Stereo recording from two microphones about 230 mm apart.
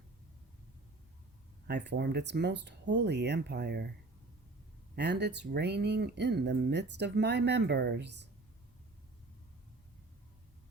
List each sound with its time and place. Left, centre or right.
1.6 s speech: right
4.9 s speech: right